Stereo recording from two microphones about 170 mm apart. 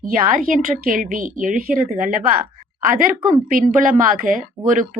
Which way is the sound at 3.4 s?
50° right (ahead or behind).